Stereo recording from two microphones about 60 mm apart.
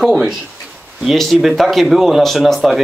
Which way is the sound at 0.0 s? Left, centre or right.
Centre.